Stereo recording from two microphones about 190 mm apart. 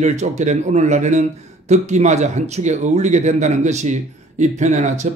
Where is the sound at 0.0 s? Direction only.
35° right (ahead or behind).